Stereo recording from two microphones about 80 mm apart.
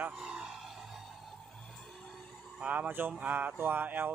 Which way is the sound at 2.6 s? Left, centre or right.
Centre.